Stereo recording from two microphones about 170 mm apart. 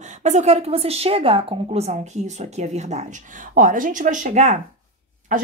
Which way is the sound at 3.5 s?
50° right (ahead or behind).